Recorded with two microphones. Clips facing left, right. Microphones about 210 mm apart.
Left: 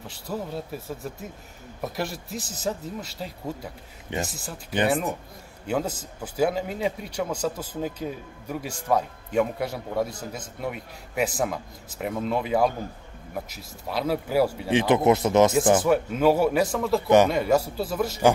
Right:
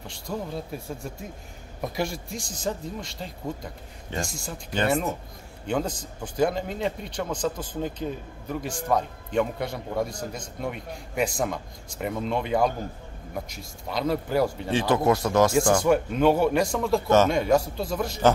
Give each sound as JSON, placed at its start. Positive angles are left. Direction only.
{"t": 0.0, "sound": "a man's voice", "side_deg": 5}
{"t": 14.7, "sound": "speech", "side_deg": 20}
{"t": 15.8, "sound": "a man's voice", "side_deg": 5}